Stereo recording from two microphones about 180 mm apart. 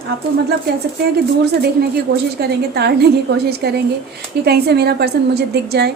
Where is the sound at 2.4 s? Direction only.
65° right (ahead or behind).